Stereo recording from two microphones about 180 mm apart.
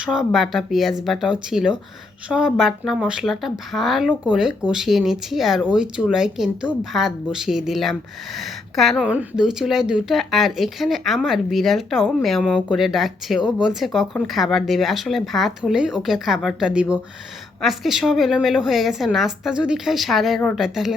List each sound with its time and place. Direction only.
0.0 s speech: 5° right (ahead or behind)